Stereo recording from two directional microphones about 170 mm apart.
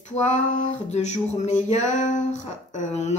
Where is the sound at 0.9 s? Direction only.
40° left (ahead or behind).